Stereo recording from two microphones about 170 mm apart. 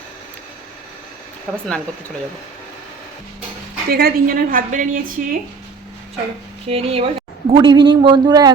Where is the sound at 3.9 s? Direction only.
60° right (ahead or behind).